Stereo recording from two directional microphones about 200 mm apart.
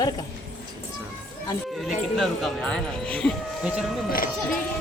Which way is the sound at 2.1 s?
Centre (ahead or behind).